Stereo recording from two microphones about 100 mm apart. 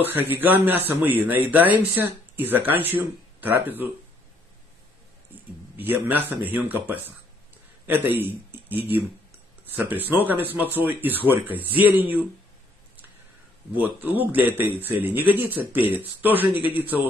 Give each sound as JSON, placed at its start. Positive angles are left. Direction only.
{"t": 0.0, "sound": "a man's voice", "side_deg": -20}
{"t": 5.8, "sound": "a man's voice", "side_deg": -20}
{"t": 13.7, "sound": "a man's voice", "side_deg": -20}